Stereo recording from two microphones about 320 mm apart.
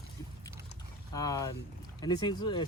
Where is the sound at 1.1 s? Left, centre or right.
Centre.